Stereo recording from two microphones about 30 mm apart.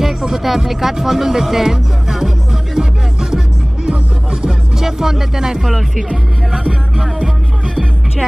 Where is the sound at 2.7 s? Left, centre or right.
Centre.